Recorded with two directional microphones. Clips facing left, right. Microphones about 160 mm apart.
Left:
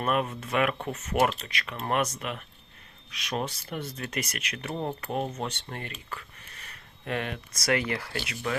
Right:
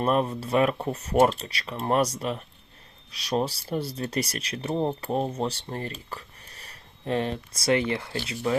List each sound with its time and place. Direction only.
0.0 s speech: 35° right (ahead or behind)